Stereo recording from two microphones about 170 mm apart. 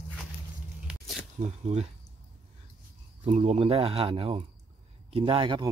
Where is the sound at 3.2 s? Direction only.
40° right (ahead or behind).